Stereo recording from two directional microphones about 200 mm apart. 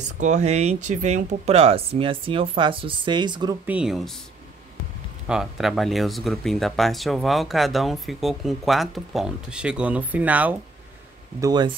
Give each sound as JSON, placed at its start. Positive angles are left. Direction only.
{"t": 0.2, "sound": "speech", "side_deg": -35}
{"t": 3.6, "sound": "speech", "side_deg": -5}
{"t": 5.2, "sound": "speech", "side_deg": -5}
{"t": 11.4, "sound": "speech", "side_deg": -20}